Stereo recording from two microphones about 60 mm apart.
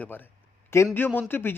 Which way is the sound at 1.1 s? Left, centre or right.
Left.